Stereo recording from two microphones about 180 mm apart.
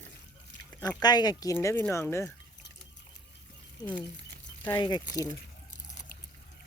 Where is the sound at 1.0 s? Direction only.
20° left (ahead or behind).